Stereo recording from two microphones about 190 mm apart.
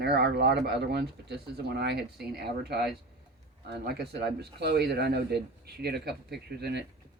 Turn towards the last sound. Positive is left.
turn(degrees=-60)  # may be behind; listen again after turning